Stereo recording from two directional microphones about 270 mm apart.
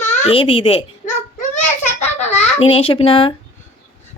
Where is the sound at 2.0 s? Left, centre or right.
Left.